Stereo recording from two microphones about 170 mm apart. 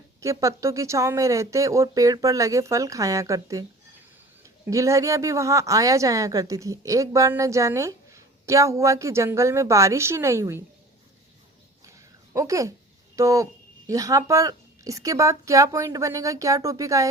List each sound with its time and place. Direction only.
0.2 s speech: 20° right (ahead or behind)
11.9 s a sound: 20° right (ahead or behind)
13.1 s speech: 20° right (ahead or behind)